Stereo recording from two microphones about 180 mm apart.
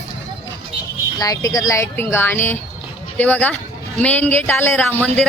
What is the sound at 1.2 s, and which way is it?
A man's voice, 20° left (ahead or behind).